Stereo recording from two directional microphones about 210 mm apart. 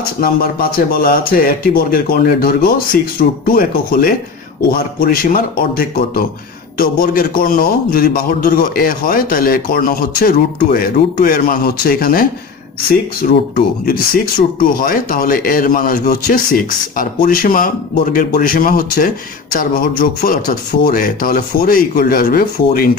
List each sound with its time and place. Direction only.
0.2 s a man's voice: 45° left (ahead or behind)
13.3 s a man's voice: 50° left (ahead or behind)